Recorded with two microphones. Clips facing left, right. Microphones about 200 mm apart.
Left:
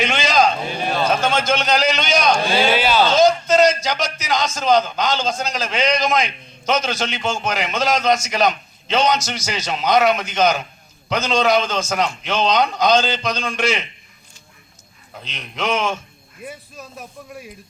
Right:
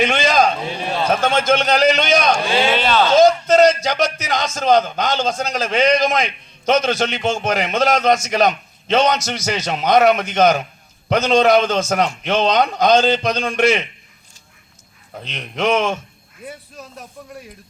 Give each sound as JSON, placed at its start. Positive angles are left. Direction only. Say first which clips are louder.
{"t": 0.0, "sound": "a sound", "louder": "right 2 dB", "side_deg": -55}
{"t": 1.2, "sound": "a man's voice", "louder": "right 3 dB", "side_deg": -55}
{"t": 2.7, "sound": "speech", "louder": "even", "side_deg": 5}
{"t": 3.2, "sound": "a man's voice", "louder": "right 4 dB", "side_deg": -55}
{"t": 15.2, "sound": "a man's voice", "louder": "right 5 dB", "side_deg": -55}
{"t": 16.4, "sound": "speech", "louder": "even", "side_deg": 5}